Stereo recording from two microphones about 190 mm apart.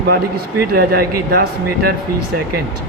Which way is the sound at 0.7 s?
55° right (ahead or behind).